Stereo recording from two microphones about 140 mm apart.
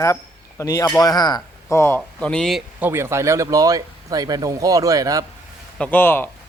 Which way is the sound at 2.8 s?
20° right (ahead or behind).